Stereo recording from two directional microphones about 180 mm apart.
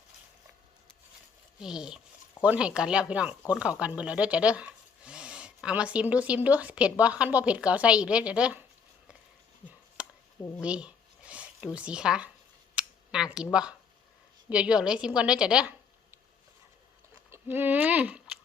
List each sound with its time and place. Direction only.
1.6 s a woman's voice: 5° right (ahead or behind)
10.0 s chop: 5° right (ahead or behind)
10.6 s speech: 5° right (ahead or behind)
12.7 s a sound: 5° right (ahead or behind)
14.5 s a woman's voice: 5° right (ahead or behind)
17.3 s speech: 10° right (ahead or behind)